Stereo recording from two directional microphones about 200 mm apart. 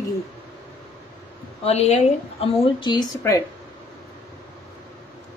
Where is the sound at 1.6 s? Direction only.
30° left (ahead or behind).